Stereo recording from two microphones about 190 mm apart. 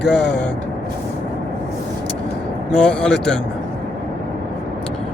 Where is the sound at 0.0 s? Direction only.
65° left (ahead or behind).